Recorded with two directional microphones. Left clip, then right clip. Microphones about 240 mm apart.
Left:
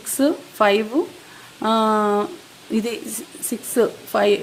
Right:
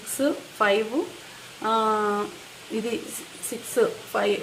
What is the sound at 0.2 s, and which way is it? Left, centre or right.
Speech, left.